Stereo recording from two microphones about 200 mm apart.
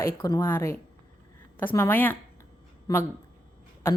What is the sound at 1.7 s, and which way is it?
Speech, 10° left (ahead or behind).